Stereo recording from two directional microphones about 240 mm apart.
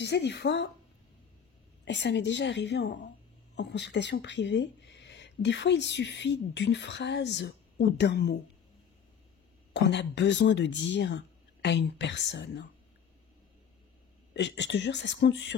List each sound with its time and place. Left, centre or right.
0.0 s speech: left
1.9 s speech: left
9.8 s speech: left
14.3 s speech: left